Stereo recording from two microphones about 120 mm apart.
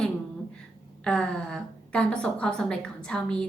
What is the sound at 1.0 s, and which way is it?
A woman's voice, 10° left (ahead or behind).